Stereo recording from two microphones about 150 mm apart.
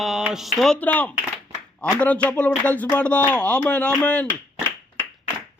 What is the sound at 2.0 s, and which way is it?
Speech, 10° left (ahead or behind).